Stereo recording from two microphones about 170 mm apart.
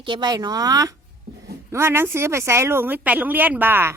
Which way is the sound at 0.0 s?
25° right (ahead or behind).